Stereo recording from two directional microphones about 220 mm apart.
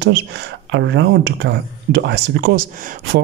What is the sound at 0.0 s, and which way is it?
Speech, 50° right (ahead or behind).